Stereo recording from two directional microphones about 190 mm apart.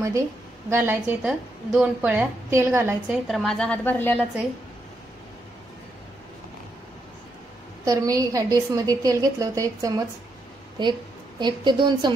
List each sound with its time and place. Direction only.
0.7 s a woman's voice: 10° right (ahead or behind); by 4.2 s 10° left (ahead or behind)
7.8 s a woman's voice: 15° right (ahead or behind)